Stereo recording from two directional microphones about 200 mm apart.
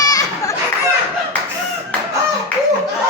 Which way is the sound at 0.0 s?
20° left (ahead or behind).